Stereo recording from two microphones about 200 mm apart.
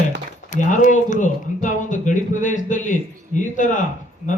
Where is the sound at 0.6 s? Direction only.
40° left (ahead or behind).